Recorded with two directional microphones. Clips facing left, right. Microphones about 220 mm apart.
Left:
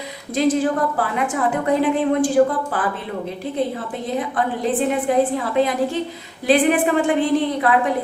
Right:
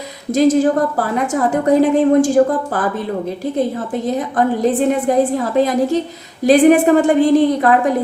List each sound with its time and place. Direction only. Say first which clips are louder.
0.3 s a woman's voice: right 6 dB; 45° right (ahead or behind)